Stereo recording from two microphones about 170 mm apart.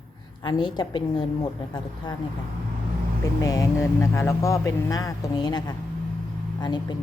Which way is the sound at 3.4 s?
20° left (ahead or behind).